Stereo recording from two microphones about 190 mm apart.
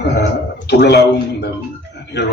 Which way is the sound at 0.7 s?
60° left (ahead or behind).